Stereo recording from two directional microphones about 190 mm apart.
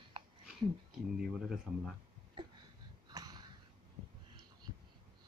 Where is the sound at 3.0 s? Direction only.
20° right (ahead or behind).